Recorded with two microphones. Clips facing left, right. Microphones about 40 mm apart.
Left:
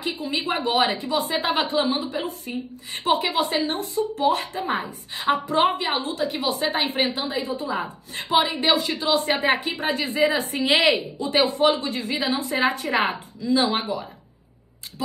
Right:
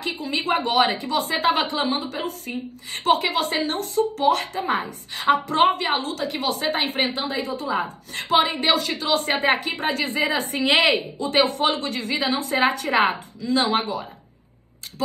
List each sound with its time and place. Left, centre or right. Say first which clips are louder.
0.0 s a woman's voice: right 1 dB; right
2.2 s a woman's voice: right 1 dB; right
6.5 s a woman's voice: even; right
8.4 s a woman's voice: even; right
10.7 s a woman's voice: right 1 dB; right
11.1 s a woman's voice: even; right